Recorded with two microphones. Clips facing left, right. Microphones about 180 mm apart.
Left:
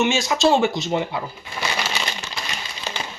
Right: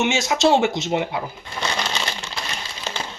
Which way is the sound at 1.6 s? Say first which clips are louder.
Right 1 dB; 5° left (ahead or behind).